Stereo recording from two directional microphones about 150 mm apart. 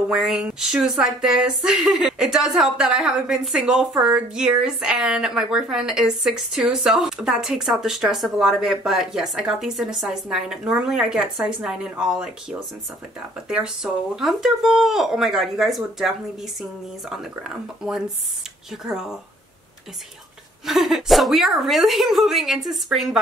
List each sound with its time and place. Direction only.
0.1 s speech: 5° right (ahead or behind)
14.1 s speech: 5° right (ahead or behind)
17.1 s speech: 5° right (ahead or behind)
20.6 s speech: centre (ahead or behind)